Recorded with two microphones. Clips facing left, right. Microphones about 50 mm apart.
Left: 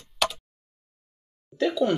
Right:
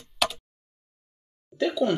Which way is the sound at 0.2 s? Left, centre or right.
Centre.